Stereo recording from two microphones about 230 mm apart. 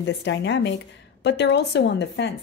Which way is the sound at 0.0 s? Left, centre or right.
Left.